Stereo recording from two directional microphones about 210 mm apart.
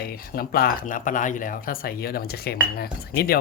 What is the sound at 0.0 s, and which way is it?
Speech, 45° left (ahead or behind).